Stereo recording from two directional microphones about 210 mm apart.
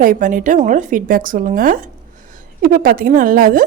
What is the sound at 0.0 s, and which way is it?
A woman's voice, 40° right (ahead or behind).